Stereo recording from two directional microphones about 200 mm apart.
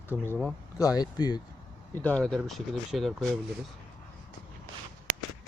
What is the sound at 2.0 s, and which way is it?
Speech, 5° left (ahead or behind).